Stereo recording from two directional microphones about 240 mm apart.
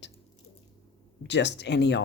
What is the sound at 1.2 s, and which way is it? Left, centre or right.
Speech, left.